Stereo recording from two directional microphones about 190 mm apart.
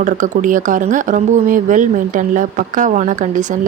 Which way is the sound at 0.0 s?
45° right (ahead or behind).